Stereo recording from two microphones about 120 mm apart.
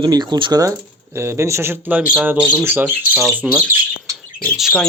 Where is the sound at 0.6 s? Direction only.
25° right (ahead or behind).